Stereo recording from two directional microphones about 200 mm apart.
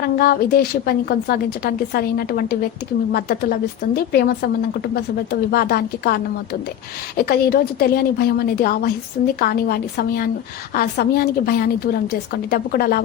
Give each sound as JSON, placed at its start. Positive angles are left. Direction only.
{"t": 0.0, "sound": "a woman's voice", "side_deg": 50}